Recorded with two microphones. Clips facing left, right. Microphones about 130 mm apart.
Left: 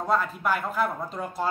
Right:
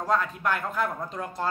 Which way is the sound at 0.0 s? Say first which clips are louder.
Left 1 dB; 5° left (ahead or behind).